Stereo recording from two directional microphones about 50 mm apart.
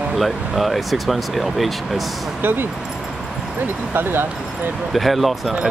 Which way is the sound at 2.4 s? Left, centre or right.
Right.